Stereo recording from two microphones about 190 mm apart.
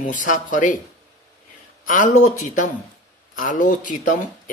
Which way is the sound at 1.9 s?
45° left (ahead or behind).